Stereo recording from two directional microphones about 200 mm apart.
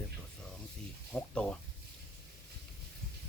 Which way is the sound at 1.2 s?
5° left (ahead or behind).